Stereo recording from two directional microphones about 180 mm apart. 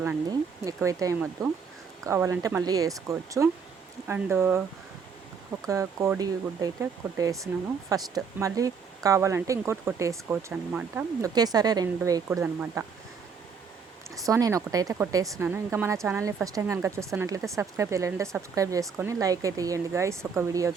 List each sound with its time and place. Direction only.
0.3 s speech: 20° right (ahead or behind)
5.6 s speech: 15° right (ahead or behind)
11.2 s speech: 20° right (ahead or behind)
14.3 s speech: 15° right (ahead or behind)